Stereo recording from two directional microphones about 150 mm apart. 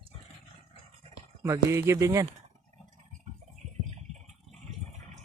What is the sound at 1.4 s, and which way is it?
Speech, 20° right (ahead or behind).